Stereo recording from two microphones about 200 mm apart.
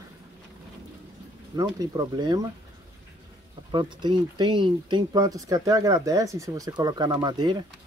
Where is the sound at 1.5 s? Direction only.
20° right (ahead or behind).